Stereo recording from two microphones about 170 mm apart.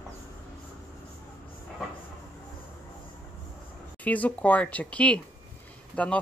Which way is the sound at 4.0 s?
10° left (ahead or behind).